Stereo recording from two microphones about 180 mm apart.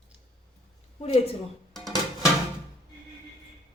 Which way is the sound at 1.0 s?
35° left (ahead or behind).